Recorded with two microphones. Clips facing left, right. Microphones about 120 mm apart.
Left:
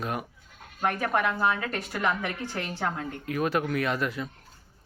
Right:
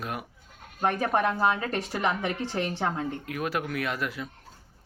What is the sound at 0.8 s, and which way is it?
Speech, 30° right (ahead or behind).